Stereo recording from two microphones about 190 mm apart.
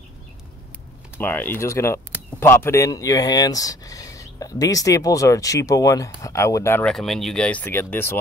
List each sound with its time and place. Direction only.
1.1 s speech: 10° left (ahead or behind)